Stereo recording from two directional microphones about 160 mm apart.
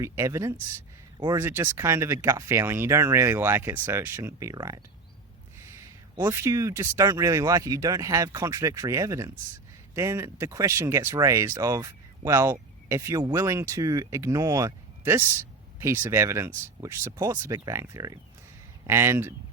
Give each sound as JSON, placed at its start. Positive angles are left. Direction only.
{"t": 0.0, "sound": "speech", "side_deg": -20}
{"t": 6.3, "sound": "speech", "side_deg": -20}